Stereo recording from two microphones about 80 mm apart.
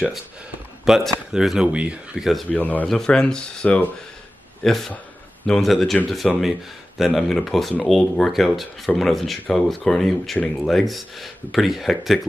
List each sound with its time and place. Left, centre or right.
0.8 s speech: centre
2.5 s a man's voice: left
2.9 s speech: centre